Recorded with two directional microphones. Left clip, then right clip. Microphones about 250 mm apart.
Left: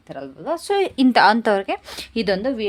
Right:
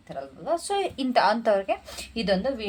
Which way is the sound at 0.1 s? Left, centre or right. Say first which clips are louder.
Left 2 dB; left.